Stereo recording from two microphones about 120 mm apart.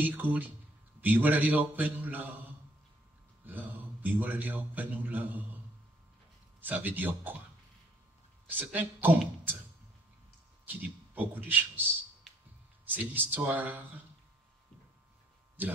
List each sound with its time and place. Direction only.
0.0 s a man's voice: 15° right (ahead or behind)
6.6 s a man's voice: 15° right (ahead or behind)
8.5 s a man's voice: 15° right (ahead or behind)
10.6 s speech: 15° right (ahead or behind)
12.9 s a man's voice: 15° right (ahead or behind)
15.6 s speech: 15° right (ahead or behind)